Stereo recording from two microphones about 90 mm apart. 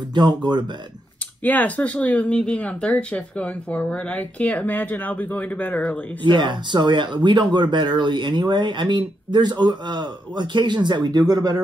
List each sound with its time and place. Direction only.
0.1 s speech: 55° right (ahead or behind)
1.4 s speech: 20° left (ahead or behind)
6.2 s speech: 60° right (ahead or behind)